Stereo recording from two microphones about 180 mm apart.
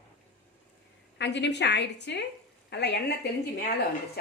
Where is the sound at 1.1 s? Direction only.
75° left (ahead or behind).